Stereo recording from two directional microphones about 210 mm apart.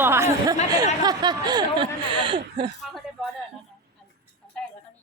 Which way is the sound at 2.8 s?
Centre (ahead or behind).